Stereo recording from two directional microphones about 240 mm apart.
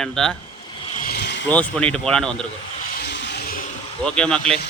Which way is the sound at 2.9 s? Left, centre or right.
Left.